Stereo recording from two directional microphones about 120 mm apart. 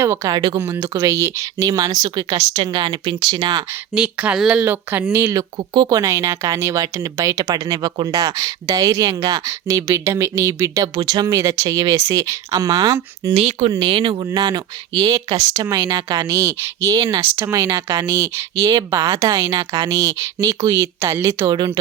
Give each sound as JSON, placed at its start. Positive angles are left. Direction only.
{"t": 0.0, "sound": "speech", "side_deg": -25}
{"t": 3.9, "sound": "speech", "side_deg": -10}
{"t": 5.5, "sound": "speech", "side_deg": -40}
{"t": 13.3, "sound": "speech", "side_deg": -60}
{"t": 15.5, "sound": "speech", "side_deg": -20}